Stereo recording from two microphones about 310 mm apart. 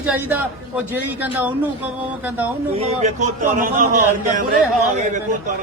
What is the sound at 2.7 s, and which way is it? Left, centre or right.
A man's voice, centre.